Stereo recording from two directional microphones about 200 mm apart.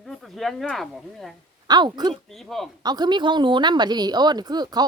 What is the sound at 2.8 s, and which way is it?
Speech, 20° right (ahead or behind).